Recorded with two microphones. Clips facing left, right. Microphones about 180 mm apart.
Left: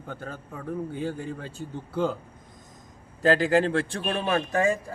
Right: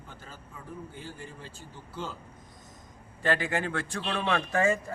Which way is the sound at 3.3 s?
30° left (ahead or behind).